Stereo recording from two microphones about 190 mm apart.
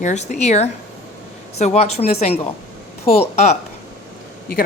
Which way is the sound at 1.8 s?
35° left (ahead or behind).